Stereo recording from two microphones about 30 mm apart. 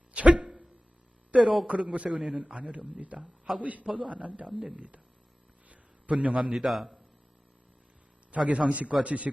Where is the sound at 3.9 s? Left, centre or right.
Right.